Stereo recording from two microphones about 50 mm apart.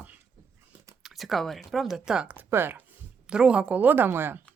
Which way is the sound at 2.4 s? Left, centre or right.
Right.